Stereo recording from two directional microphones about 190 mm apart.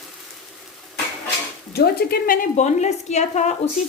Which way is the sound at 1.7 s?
55° left (ahead or behind).